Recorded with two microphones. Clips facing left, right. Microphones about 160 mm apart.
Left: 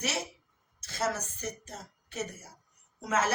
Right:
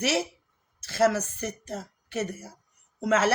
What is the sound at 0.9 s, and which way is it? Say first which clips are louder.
Speech: right 9 dB; 90° right.